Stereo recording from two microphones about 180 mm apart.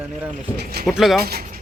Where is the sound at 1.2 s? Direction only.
60° right (ahead or behind).